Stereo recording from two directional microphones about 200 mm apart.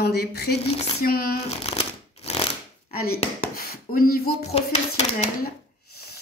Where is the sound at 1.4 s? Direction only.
30° left (ahead or behind).